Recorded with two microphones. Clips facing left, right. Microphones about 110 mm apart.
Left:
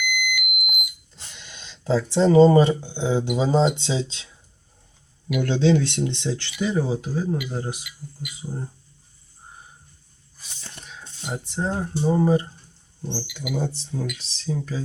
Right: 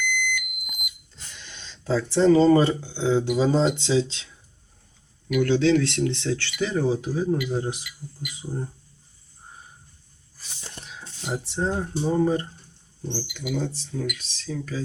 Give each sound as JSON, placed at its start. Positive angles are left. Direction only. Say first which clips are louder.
{"t": 0.0, "sound": "smoke detector", "louder": "even", "side_deg": 10}
{"t": 1.1, "sound": "speech", "louder": "even", "side_deg": 20}
{"t": 5.4, "sound": "speech", "louder": "even", "side_deg": 20}
{"t": 7.1, "sound": "speech", "louder": "right 2 dB", "side_deg": 0}
{"t": 10.8, "sound": "a sound", "louder": "right 1 dB", "side_deg": -5}
{"t": 11.6, "sound": "speech", "louder": "left 2 dB", "side_deg": 5}